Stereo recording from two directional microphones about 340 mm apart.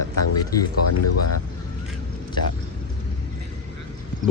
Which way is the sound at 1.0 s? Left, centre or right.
Left.